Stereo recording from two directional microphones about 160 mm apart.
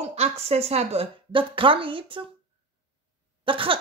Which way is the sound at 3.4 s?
35° right (ahead or behind).